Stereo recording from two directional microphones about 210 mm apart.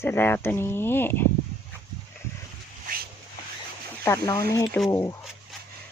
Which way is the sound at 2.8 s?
45° right (ahead or behind).